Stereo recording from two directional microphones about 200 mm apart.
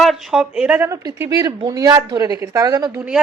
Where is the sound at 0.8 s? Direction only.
15° right (ahead or behind).